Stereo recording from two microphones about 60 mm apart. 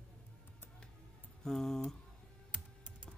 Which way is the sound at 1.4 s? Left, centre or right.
Centre.